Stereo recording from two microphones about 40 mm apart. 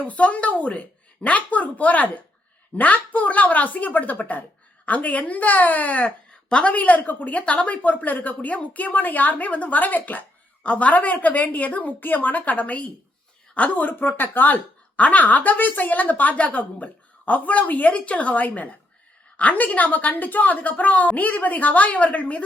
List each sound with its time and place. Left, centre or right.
0.0 s a woman's voice: left
6.7 s a woman's voice: left